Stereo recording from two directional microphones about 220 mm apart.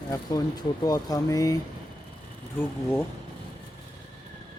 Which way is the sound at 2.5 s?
10° left (ahead or behind).